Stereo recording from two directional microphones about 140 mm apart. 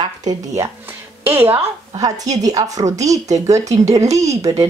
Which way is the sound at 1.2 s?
15° right (ahead or behind).